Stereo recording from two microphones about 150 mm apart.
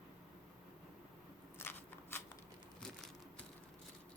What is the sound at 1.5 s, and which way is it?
Scissors, 15° left (ahead or behind).